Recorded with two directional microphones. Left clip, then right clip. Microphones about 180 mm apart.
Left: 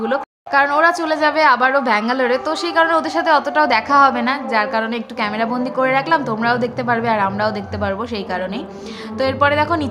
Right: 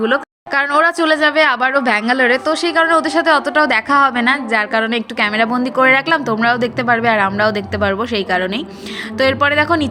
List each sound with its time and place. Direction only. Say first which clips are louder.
0.0 s a woman's voice: right 4 dB; 15° right (ahead or behind)